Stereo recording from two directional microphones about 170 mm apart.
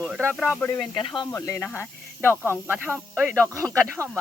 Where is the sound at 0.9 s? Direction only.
30° left (ahead or behind).